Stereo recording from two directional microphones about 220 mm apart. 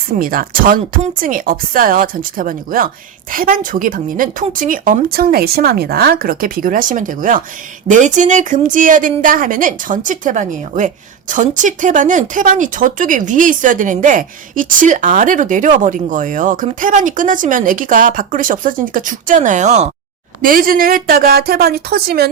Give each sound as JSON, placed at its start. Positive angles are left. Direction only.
{"t": 0.2, "sound": "speech", "side_deg": -40}
{"t": 20.4, "sound": "speech", "side_deg": -40}